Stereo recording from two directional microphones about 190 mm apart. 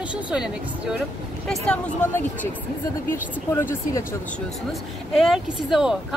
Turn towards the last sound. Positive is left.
turn(degrees=0)  # may be behind; listen again after turning